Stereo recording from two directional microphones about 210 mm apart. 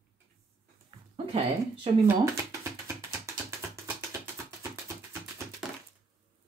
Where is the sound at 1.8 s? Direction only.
15° right (ahead or behind).